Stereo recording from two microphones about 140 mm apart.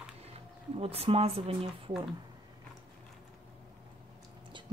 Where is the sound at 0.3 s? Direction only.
45° right (ahead or behind).